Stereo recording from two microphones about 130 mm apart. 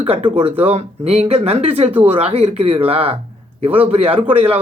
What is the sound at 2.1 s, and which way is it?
Speech, 50° right (ahead or behind).